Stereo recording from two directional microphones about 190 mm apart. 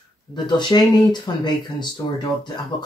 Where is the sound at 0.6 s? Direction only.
20° left (ahead or behind).